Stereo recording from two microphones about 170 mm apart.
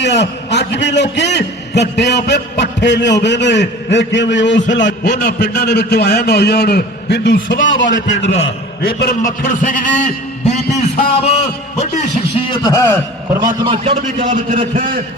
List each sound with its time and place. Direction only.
0.0 s a man's voice: 90° left
7.4 s a man's voice: 55° left (ahead or behind)
8.2 s a man's voice: 90° left; by 9.1 s 65° left (ahead or behind)
9.4 s a man's voice: 50° left (ahead or behind)
12.5 s a man's voice: 20° left (ahead or behind)
13.7 s a man's voice: 40° right (ahead or behind)